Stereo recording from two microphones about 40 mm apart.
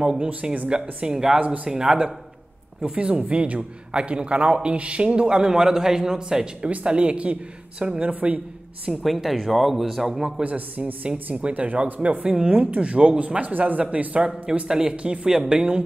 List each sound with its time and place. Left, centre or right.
0.0 s a man's voice: right
1.4 s speech: right
1.7 s a man's voice: centre
8.1 s speech: right
9.0 s a man's voice: centre
10.4 s speech: right
12.4 s a man's voice: right
14.7 s a man's voice: centre